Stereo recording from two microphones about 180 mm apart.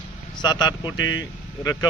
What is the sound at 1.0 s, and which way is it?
Speech, 90° left.